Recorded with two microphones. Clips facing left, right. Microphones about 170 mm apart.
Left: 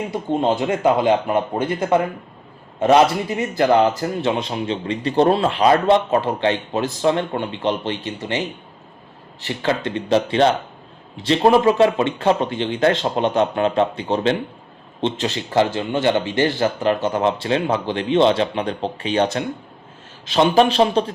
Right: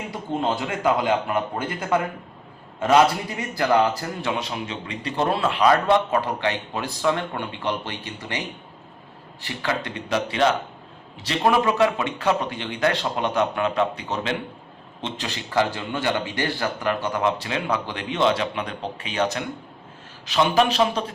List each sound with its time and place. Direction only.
0.1 s speech: 25° left (ahead or behind)
9.4 s speech: 25° left (ahead or behind)